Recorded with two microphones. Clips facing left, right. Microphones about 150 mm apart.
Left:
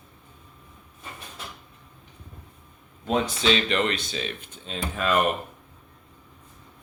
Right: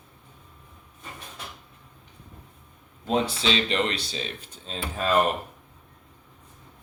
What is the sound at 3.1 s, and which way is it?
Speech, 30° right (ahead or behind).